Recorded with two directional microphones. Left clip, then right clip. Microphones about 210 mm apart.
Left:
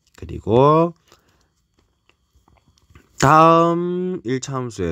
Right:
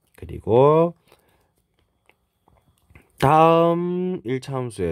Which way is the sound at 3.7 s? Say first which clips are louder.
Left 2 dB; 10° left (ahead or behind).